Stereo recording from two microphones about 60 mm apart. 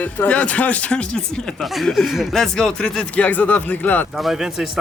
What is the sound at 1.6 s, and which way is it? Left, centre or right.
Speech, centre.